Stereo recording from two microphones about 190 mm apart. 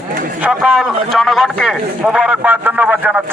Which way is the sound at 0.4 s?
5° right (ahead or behind).